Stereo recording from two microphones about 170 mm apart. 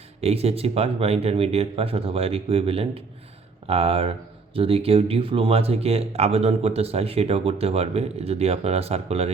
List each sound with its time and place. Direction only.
0.2 s speech: 35° right (ahead or behind)